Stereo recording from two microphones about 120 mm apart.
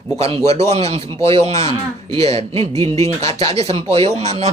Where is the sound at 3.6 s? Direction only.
55° right (ahead or behind).